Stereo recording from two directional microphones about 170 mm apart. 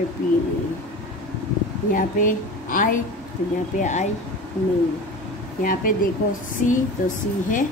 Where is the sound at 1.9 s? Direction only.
50° left (ahead or behind).